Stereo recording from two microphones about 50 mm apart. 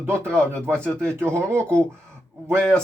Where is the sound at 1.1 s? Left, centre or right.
Right.